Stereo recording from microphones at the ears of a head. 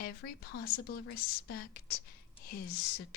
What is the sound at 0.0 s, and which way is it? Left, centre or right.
A woman's voice, left.